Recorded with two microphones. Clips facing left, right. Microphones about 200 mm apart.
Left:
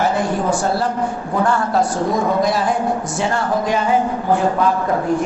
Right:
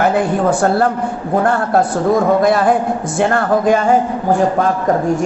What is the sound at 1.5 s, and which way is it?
A woman's voice, 55° right (ahead or behind).